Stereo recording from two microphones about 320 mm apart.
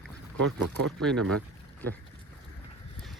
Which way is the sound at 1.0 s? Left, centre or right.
Centre.